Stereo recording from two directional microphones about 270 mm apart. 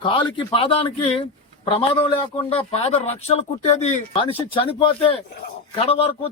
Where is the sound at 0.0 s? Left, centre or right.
Centre.